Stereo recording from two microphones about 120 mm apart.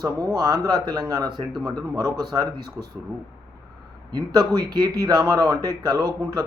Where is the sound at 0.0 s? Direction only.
30° right (ahead or behind).